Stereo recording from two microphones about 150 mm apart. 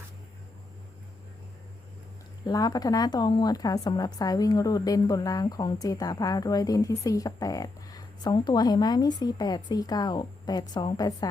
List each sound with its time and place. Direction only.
2.5 s a woman's voice: 25° left (ahead or behind)